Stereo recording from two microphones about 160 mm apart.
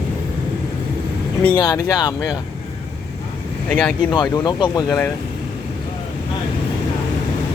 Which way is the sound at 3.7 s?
5° left (ahead or behind).